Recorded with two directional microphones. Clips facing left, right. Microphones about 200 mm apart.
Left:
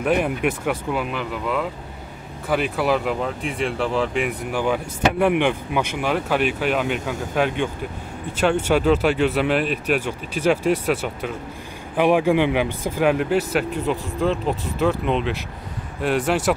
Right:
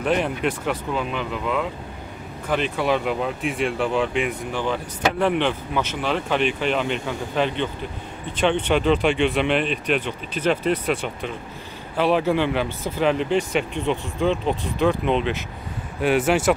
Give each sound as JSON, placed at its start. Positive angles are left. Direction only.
{"t": 0.0, "sound": "speech", "side_deg": 10}